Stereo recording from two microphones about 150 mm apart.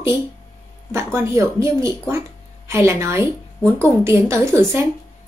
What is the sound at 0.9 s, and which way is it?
A woman's voice, 15° right (ahead or behind).